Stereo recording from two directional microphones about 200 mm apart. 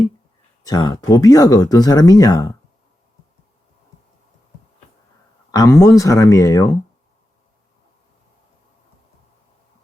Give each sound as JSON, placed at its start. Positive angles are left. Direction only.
{"t": 0.6, "sound": "speech", "side_deg": 20}
{"t": 5.5, "sound": "speech", "side_deg": 15}